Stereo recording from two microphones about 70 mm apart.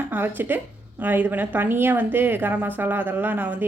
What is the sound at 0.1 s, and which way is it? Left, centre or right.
A woman's voice, right.